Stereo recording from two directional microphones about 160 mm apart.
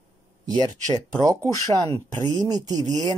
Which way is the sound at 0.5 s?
25° right (ahead or behind).